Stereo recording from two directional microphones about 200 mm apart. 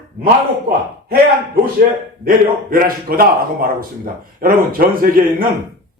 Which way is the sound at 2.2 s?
45° right (ahead or behind).